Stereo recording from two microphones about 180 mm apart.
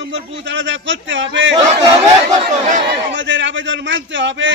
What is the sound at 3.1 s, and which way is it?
A man's voice, 90° right.